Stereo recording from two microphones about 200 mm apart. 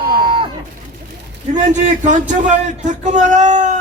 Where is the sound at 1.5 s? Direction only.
40° right (ahead or behind).